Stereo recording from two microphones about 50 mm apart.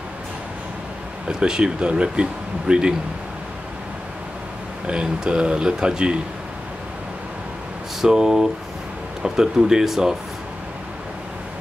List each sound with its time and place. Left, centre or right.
1.2 s speech: centre
4.8 s speech: centre
8.0 s speech: centre